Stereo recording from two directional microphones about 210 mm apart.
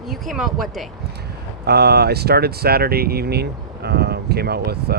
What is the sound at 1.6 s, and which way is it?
Speech, 50° right (ahead or behind).